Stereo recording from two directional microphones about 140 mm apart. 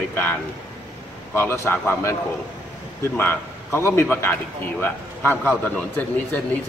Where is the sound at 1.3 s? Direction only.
15° left (ahead or behind).